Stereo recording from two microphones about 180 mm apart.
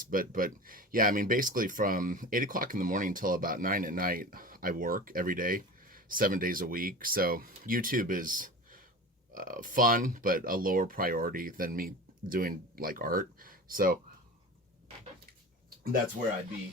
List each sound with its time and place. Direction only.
0.0 s speech: 50° right (ahead or behind)